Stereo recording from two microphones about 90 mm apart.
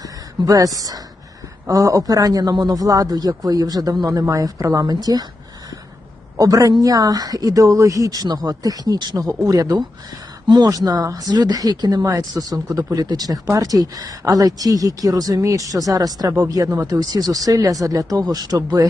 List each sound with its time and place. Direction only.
0.0 s a man's voice: 40° right (ahead or behind)
6.3 s a man's voice: 40° right (ahead or behind)
10.4 s speech: 55° right (ahead or behind)
10.7 s a man's voice: 45° right (ahead or behind)